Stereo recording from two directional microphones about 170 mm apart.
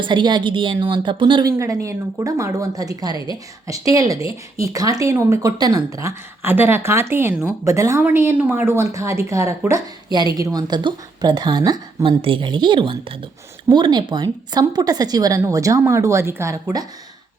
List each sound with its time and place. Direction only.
0.0 s a woman's voice: 25° right (ahead or behind)